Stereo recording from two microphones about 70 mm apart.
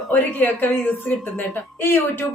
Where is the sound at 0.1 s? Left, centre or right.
Left.